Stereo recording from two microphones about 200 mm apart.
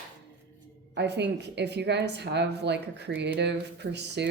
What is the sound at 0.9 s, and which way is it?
Speech, 60° right (ahead or behind).